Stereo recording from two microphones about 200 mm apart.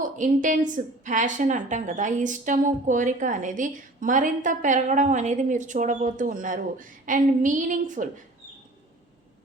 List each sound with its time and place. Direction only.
0.0 s a woman's voice: 40° right (ahead or behind)